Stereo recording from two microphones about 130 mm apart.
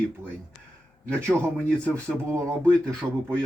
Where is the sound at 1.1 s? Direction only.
15° right (ahead or behind).